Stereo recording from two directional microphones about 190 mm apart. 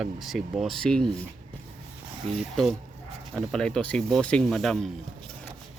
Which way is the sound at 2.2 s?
30° right (ahead or behind).